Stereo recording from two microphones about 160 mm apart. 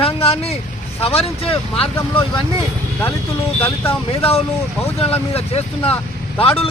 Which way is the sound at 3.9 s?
35° left (ahead or behind).